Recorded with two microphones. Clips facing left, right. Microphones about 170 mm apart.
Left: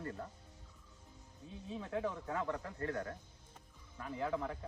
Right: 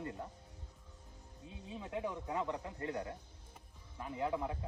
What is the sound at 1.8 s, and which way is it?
Speech, 15° right (ahead or behind).